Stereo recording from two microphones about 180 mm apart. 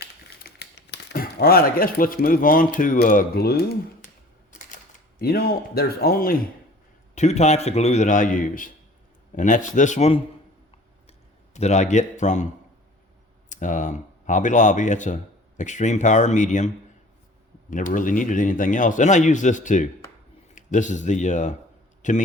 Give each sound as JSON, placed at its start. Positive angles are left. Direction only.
{"t": 0.0, "sound": "speech", "side_deg": 65}
{"t": 5.2, "sound": "speech", "side_deg": 60}
{"t": 7.2, "sound": "a man's voice", "side_deg": 40}
{"t": 11.5, "sound": "a man's voice", "side_deg": 40}
{"t": 13.5, "sound": "speech", "side_deg": 45}